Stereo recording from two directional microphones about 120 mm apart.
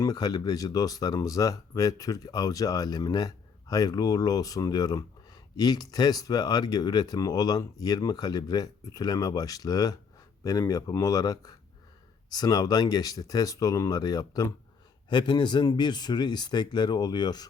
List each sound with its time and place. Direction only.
0.0 s speech: 30° left (ahead or behind)